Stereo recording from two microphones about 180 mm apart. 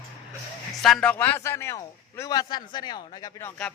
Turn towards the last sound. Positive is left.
turn(degrees=20)  # may be behind; listen again after turning